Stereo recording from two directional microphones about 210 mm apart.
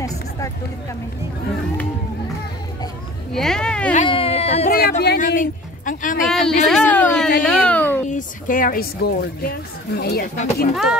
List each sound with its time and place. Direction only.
3.3 s speech: centre (ahead or behind)
4.0 s speech: 25° left (ahead or behind)
4.6 s speech: 45° left (ahead or behind)
6.2 s speech: centre (ahead or behind)
8.1 s speech: 40° left (ahead or behind)
10.3 s speech: 35° left (ahead or behind)
10.7 s speech: centre (ahead or behind)